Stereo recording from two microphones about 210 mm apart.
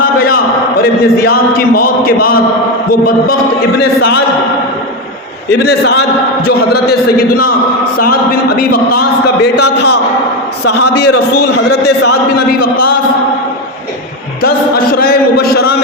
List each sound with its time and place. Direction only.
0.8 s a man's voice: 45° left (ahead or behind)
3.8 s a man's voice: 50° left (ahead or behind)
5.6 s a man's voice: 50° left (ahead or behind)
14.4 s a man's voice: 45° left (ahead or behind)